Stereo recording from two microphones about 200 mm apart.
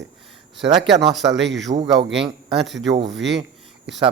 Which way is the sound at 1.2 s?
60° right (ahead or behind).